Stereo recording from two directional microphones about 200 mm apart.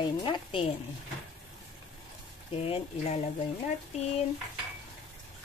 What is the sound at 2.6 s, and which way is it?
Speech, 30° left (ahead or behind).